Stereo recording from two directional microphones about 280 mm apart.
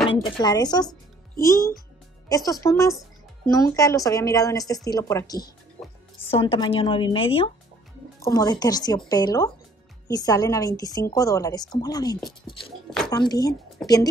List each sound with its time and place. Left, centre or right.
0.1 s a woman's voice: centre